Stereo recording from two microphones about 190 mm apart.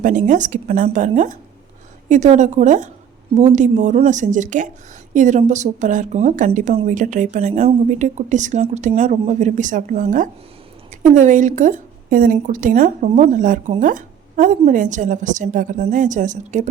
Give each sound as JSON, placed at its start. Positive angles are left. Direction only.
{"t": 0.0, "sound": "a woman's voice", "side_deg": -40}